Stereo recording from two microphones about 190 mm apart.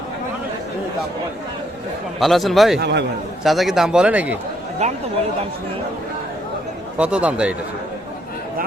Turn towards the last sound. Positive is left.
turn(degrees=-5)  # may be behind; listen again after turning